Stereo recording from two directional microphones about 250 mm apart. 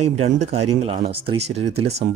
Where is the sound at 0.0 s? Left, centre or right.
Right.